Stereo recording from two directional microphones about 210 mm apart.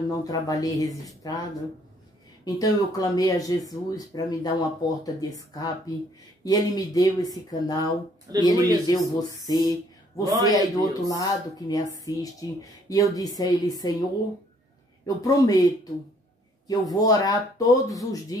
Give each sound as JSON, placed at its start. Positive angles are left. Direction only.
{"t": 0.2, "sound": "speech", "side_deg": 15}
{"t": 2.4, "sound": "speech", "side_deg": 15}
{"t": 9.5, "sound": "a sound", "side_deg": 20}
{"t": 10.4, "sound": "speech", "side_deg": 15}
{"t": 15.0, "sound": "speech", "side_deg": 15}